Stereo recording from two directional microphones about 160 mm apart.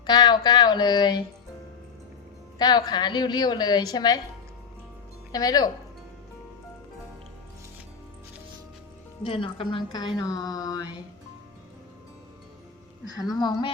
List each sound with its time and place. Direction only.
0.0 s a woman's voice: 25° left (ahead or behind)
2.6 s a woman's voice: 25° left (ahead or behind)
5.3 s a woman's voice: 25° left (ahead or behind)
9.2 s a woman's voice: 35° left (ahead or behind)
13.1 s a woman's voice: 25° left (ahead or behind)